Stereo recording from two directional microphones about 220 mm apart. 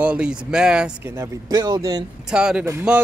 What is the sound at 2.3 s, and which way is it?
Speech, 5° right (ahead or behind).